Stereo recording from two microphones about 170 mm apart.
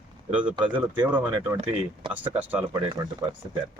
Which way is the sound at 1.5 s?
40° right (ahead or behind).